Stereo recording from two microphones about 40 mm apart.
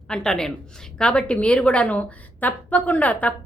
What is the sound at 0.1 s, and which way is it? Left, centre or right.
A woman's voice, centre.